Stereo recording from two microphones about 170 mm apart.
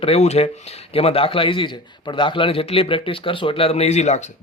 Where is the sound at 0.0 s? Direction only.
40° left (ahead or behind).